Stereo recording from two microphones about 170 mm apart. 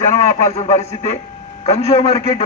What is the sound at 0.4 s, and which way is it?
A man's voice, 40° left (ahead or behind).